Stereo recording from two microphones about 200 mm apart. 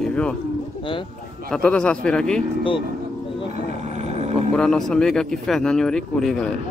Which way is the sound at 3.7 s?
35° right (ahead or behind).